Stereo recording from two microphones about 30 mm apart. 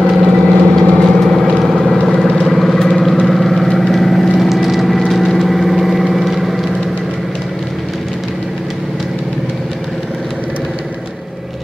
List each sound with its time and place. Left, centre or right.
0.1 s vehicle: centre
1.2 s vehicle: centre